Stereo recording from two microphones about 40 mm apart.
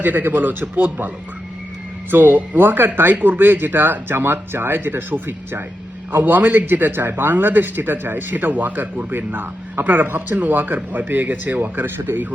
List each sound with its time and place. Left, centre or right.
0.0 s speech: right
11.9 s speech: right